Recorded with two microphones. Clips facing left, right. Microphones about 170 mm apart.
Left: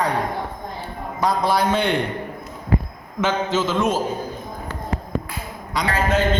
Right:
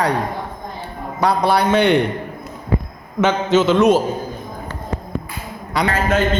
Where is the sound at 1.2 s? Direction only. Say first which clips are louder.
Right 3 dB; 70° right (ahead or behind).